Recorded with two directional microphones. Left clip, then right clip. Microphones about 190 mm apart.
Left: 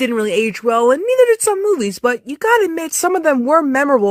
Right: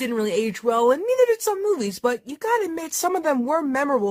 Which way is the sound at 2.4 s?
40° left (ahead or behind).